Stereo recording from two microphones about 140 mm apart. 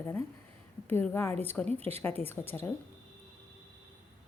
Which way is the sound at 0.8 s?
15° left (ahead or behind).